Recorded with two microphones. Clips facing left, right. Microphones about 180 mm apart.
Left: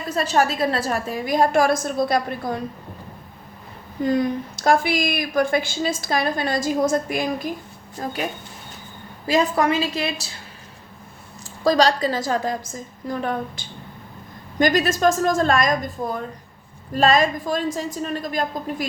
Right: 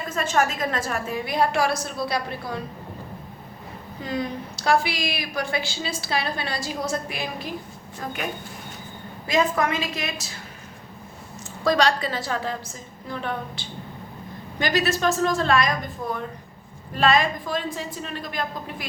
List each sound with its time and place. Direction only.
0.1 s a woman's voice: 35° left (ahead or behind)
4.0 s a woman's voice: 45° left (ahead or behind)
9.2 s a woman's voice: 35° left (ahead or behind)
11.6 s a woman's voice: 35° left (ahead or behind)
16.9 s a woman's voice: 40° left (ahead or behind)